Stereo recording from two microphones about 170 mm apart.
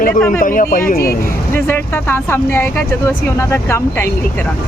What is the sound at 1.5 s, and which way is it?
Speech, 10° left (ahead or behind).